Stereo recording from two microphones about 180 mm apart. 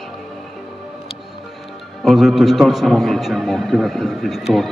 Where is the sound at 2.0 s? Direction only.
Centre (ahead or behind).